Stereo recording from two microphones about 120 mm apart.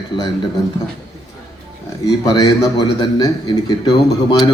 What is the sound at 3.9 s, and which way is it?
Speech, 45° left (ahead or behind).